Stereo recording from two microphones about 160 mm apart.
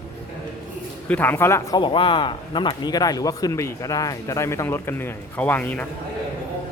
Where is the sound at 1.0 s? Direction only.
10° left (ahead or behind).